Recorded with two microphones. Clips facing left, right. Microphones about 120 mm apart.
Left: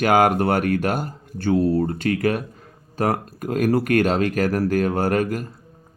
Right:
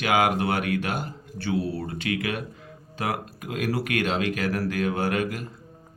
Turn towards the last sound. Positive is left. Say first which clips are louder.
# left 5 dB
turn(degrees=45)  # may be behind; listen again after turning